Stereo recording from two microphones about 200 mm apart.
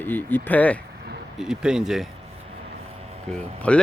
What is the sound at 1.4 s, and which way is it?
Speech, 5° right (ahead or behind).